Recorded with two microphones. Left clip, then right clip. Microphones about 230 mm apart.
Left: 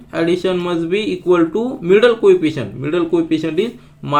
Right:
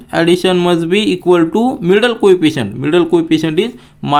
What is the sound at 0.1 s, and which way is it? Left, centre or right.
Speech, right.